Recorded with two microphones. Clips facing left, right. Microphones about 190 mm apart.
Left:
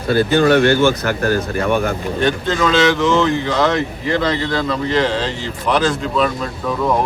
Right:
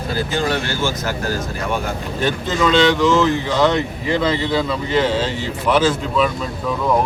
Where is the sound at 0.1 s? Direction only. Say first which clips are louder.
Left 9 dB; 65° left (ahead or behind).